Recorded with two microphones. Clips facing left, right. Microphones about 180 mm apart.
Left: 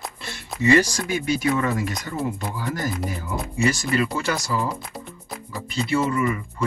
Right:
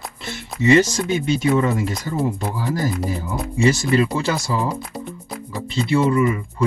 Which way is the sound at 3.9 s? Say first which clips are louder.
Right 4 dB; 30° right (ahead or behind).